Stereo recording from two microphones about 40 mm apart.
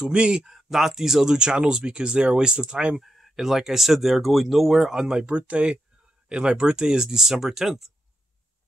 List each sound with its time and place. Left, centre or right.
0.0 s speech: right
0.5 s speech: centre
1.3 s speech: right
3.0 s speech: centre
4.9 s speech: centre
5.2 s speech: right; by 7.9 s centre